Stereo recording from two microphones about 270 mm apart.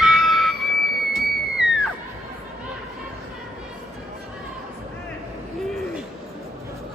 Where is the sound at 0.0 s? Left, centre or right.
Centre.